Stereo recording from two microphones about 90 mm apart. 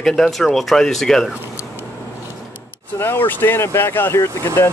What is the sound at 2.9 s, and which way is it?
Speech, 25° left (ahead or behind).